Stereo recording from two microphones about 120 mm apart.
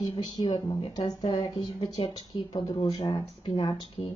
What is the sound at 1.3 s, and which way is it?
Speech, 50° left (ahead or behind).